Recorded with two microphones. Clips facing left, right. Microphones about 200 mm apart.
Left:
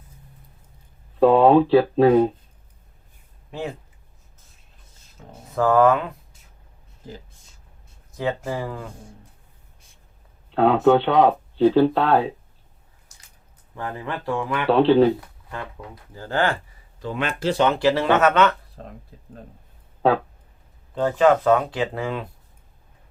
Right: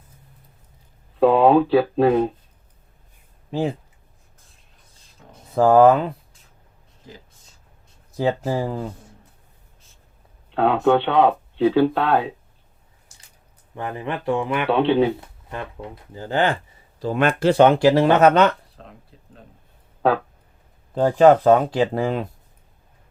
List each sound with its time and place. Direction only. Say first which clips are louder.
1.2 s speech: left 1 dB; centre (ahead or behind)
5.5 s speech: right 4 dB; 30° right (ahead or behind)
8.1 s speech: right 4 dB; 35° right (ahead or behind)
10.5 s speech: left 1 dB; centre (ahead or behind)
13.7 s speech: right 2 dB; 20° right (ahead or behind)
14.7 s speech: left 3 dB; centre (ahead or behind)
15.4 s speech: right 3 dB; 20° right (ahead or behind)
17.0 s speech: right 6 dB; 45° right (ahead or behind)
18.8 s speech: left 4 dB; 45° left (ahead or behind)
20.9 s speech: right 4 dB; 35° right (ahead or behind)